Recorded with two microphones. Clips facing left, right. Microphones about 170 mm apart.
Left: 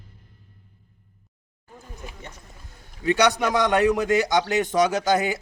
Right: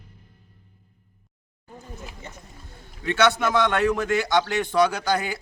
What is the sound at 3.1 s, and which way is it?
A man's voice, 15° left (ahead or behind).